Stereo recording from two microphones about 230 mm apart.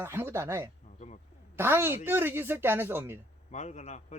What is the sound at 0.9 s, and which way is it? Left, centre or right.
Speech, left.